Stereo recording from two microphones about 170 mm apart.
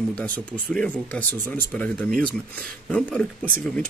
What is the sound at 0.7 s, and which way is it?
Speech, 5° left (ahead or behind).